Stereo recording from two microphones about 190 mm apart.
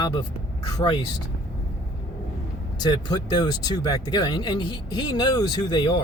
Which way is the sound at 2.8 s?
20° left (ahead or behind).